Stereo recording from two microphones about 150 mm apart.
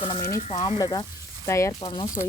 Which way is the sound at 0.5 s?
30° left (ahead or behind).